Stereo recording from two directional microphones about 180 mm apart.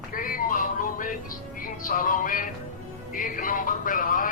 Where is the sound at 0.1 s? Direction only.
50° left (ahead or behind).